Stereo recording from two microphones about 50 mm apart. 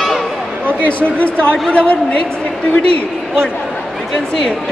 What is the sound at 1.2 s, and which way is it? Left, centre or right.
Speech, left.